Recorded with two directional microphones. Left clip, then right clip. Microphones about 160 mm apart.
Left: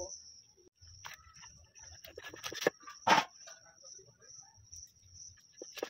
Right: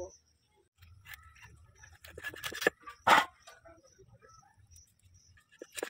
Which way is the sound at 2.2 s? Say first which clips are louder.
Right 3 dB; 10° left (ahead or behind).